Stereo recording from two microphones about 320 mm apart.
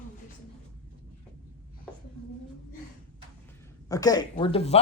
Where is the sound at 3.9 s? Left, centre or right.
Centre.